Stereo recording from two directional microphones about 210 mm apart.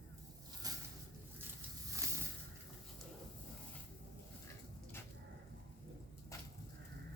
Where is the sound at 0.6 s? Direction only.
15° right (ahead or behind).